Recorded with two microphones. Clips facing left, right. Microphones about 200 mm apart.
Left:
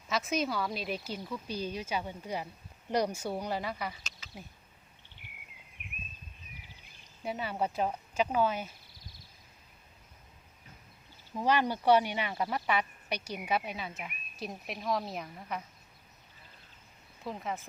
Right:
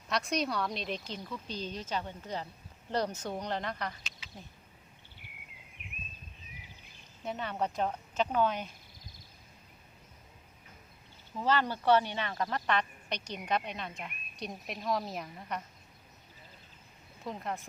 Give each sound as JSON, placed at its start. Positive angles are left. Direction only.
{"t": 0.1, "sound": "speech", "side_deg": 0}
{"t": 4.2, "sound": "a sound", "side_deg": 40}
{"t": 7.2, "sound": "speech", "side_deg": 5}
{"t": 11.3, "sound": "speech", "side_deg": 15}
{"t": 17.2, "sound": "speech", "side_deg": 0}